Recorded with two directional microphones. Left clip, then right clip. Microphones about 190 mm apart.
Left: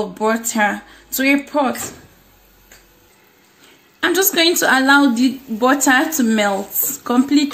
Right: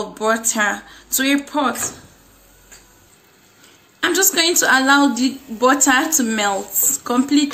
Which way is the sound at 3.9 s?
40° left (ahead or behind).